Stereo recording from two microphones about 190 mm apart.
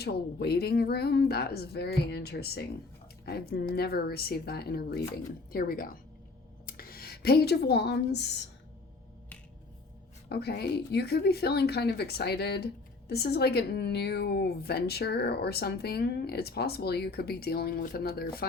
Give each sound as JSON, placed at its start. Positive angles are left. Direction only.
{"t": 0.0, "sound": "speech", "side_deg": 60}
{"t": 10.2, "sound": "speech", "side_deg": 60}